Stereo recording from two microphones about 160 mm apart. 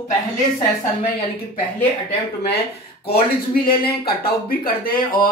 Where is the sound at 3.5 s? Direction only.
70° left (ahead or behind).